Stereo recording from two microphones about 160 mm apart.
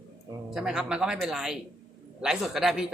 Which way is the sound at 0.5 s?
5° right (ahead or behind).